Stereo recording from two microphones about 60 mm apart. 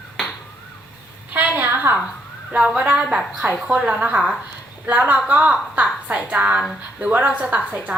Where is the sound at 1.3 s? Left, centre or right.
Right.